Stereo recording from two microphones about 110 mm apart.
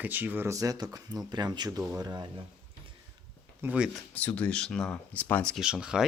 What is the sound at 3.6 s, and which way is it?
Speech, 15° right (ahead or behind).